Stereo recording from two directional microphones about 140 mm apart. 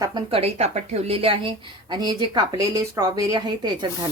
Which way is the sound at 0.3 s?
45° right (ahead or behind).